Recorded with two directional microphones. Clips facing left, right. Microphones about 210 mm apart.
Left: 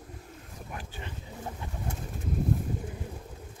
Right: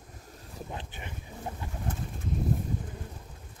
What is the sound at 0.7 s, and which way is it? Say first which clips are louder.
Boat: left 2 dB; 20° right (ahead or behind).